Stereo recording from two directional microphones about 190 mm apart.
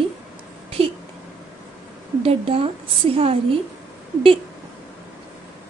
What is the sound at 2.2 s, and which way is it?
Speech, 30° right (ahead or behind).